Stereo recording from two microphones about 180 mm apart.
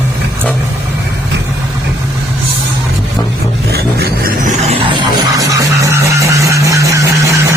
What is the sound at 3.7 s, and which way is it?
Music, 60° right (ahead or behind).